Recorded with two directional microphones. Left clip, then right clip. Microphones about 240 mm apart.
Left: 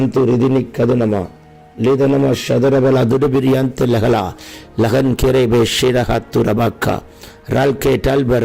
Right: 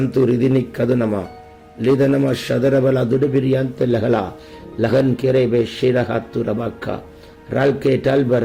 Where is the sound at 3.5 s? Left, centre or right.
Left.